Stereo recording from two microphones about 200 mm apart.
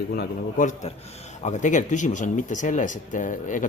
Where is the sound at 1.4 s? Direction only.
35° left (ahead or behind).